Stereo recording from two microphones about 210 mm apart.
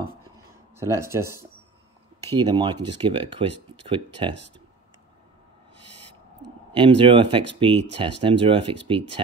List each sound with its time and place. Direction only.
0.7 s speech: 15° right (ahead or behind)
6.7 s speech: 25° right (ahead or behind)